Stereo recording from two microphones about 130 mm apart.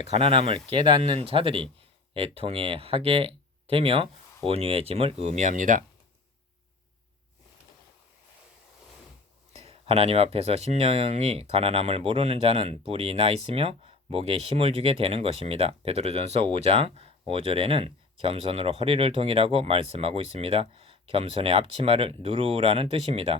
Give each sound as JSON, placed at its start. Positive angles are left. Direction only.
{"t": 0.1, "sound": "speech", "side_deg": -45}
{"t": 9.5, "sound": "speech", "side_deg": -50}